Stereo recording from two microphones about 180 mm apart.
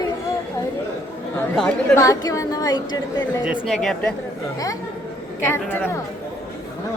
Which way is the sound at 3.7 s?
5° left (ahead or behind).